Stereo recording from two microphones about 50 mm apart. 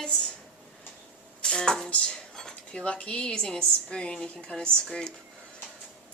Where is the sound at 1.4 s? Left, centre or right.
Centre.